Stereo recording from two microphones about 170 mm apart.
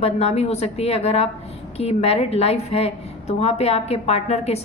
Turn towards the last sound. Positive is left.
turn(degrees=40)  # may be behind; listen again after turning